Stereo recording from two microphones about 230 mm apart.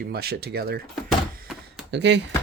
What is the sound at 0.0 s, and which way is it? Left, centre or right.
Speech, right.